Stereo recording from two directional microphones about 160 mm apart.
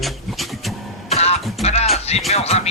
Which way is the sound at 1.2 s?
40° left (ahead or behind).